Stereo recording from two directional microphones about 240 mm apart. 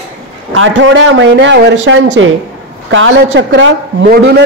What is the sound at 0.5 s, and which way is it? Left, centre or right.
A man's voice, right.